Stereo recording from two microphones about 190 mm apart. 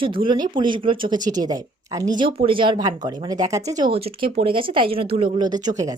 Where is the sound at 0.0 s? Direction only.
25° right (ahead or behind).